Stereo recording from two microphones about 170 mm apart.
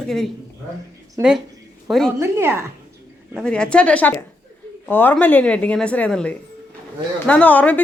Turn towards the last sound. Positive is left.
turn(degrees=10)  # may be behind; listen again after turning